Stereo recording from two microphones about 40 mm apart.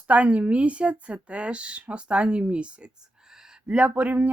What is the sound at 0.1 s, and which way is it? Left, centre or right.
Speech, right.